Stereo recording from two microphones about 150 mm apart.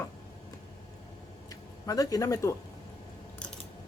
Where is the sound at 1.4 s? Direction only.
25° left (ahead or behind).